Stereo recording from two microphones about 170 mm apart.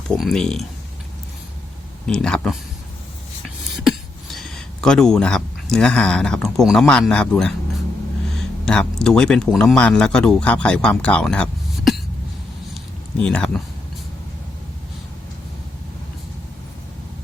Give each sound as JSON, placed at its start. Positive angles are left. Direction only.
{"t": 0.2, "sound": "speech", "side_deg": 0}
{"t": 2.0, "sound": "speech", "side_deg": 5}
{"t": 3.8, "sound": "speech", "side_deg": 0}
{"t": 12.7, "sound": "a sound", "side_deg": 5}